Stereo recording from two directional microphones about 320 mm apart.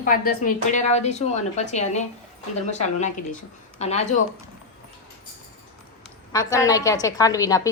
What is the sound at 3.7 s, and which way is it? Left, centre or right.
Speech, centre.